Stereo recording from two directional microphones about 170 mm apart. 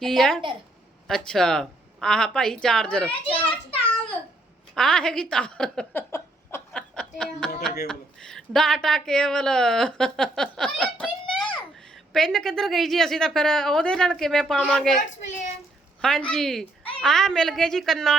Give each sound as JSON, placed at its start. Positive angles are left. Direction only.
{"t": 0.0, "sound": "speech", "side_deg": 0}
{"t": 3.2, "sound": "a child's voice", "side_deg": 30}
{"t": 4.7, "sound": "speech", "side_deg": 5}
{"t": 11.0, "sound": "a sound", "side_deg": 0}
{"t": 12.1, "sound": "speech", "side_deg": 0}